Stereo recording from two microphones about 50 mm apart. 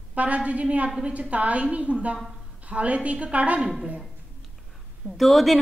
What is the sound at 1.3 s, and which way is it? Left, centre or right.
A woman's voice, right.